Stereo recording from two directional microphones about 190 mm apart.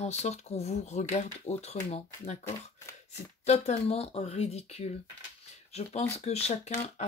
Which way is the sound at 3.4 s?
35° left (ahead or behind).